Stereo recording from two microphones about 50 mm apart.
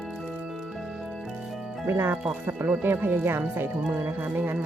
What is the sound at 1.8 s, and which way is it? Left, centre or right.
Speech, right.